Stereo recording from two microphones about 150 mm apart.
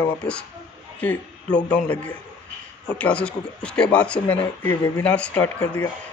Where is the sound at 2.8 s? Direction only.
10° left (ahead or behind).